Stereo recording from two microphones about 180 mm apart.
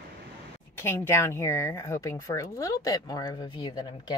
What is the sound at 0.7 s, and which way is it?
Speech, 15° left (ahead or behind).